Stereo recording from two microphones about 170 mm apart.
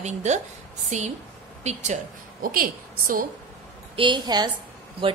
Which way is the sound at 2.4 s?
60° right (ahead or behind).